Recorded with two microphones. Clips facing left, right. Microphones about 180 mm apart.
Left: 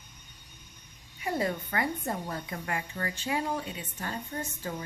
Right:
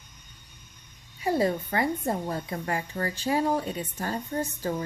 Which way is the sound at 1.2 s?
30° right (ahead or behind).